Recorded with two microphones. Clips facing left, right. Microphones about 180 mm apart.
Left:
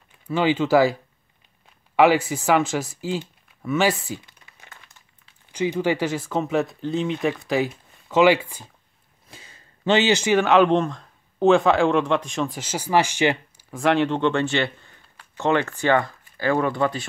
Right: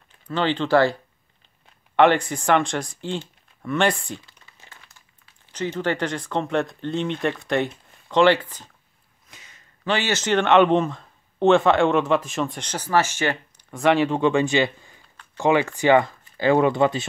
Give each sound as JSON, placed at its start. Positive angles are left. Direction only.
{"t": 0.3, "sound": "speech", "side_deg": 10}
{"t": 2.0, "sound": "speech", "side_deg": 5}
{"t": 5.5, "sound": "speech", "side_deg": 10}
{"t": 9.3, "sound": "speech", "side_deg": 30}
{"t": 13.7, "sound": "speech", "side_deg": 0}